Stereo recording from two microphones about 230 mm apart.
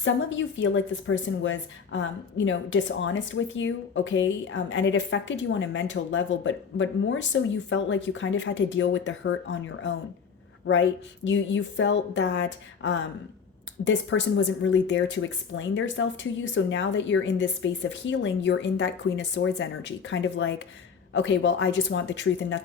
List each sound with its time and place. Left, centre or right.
0.0 s a woman's voice: left